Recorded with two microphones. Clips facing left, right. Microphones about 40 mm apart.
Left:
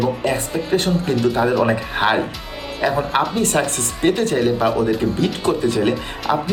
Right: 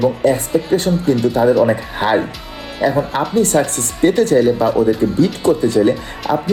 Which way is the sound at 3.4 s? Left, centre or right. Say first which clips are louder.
Right 4 dB; left.